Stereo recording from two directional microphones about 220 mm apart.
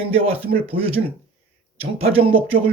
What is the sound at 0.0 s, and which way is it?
Speech, 25° right (ahead or behind).